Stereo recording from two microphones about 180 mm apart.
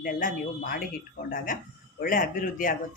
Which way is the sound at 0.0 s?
50° left (ahead or behind).